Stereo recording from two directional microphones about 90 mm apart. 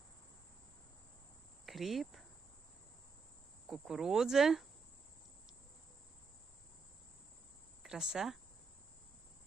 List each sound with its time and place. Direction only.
1.6 s cricket: centre (ahead or behind)
3.7 s speech: 5° right (ahead or behind)
7.8 s speech: 5° right (ahead or behind)